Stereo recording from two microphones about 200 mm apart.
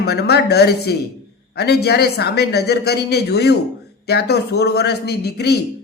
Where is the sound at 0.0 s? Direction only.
55° left (ahead or behind).